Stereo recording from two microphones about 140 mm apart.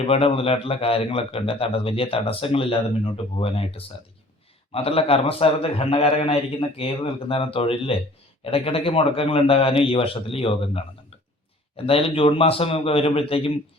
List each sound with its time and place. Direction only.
0.0 s a man's voice: 45° left (ahead or behind)
11.9 s a man's voice: 45° left (ahead or behind)